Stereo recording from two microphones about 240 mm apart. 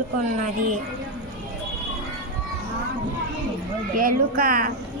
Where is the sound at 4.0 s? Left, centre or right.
Right.